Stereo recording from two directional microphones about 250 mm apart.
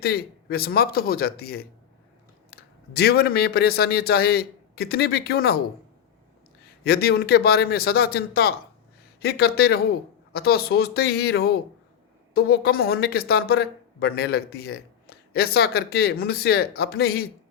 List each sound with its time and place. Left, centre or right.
0.0 s speech: left
6.8 s speech: left